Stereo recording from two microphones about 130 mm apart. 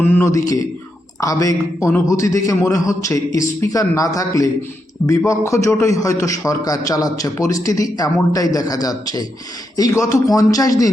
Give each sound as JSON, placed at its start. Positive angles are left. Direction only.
{"t": 0.0, "sound": "a man's voice", "side_deg": 20}